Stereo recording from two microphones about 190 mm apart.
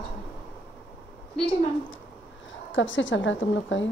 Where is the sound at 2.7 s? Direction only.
90° left.